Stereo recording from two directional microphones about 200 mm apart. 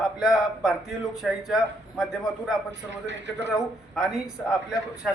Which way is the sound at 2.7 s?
60° right (ahead or behind).